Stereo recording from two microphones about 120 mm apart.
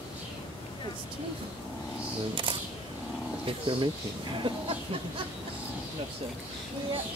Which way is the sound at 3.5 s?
45° right (ahead or behind).